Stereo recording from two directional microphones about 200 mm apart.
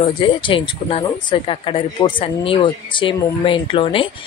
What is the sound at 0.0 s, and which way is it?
Speech, 25° left (ahead or behind).